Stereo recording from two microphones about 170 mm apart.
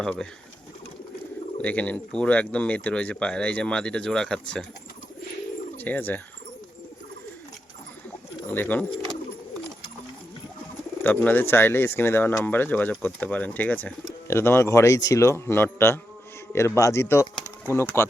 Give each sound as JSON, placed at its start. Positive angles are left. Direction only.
{"t": 0.0, "sound": "speech", "side_deg": 5}
{"t": 1.6, "sound": "speech", "side_deg": 10}
{"t": 5.7, "sound": "speech", "side_deg": 10}
{"t": 8.4, "sound": "speech", "side_deg": 10}
{"t": 11.0, "sound": "speech", "side_deg": 10}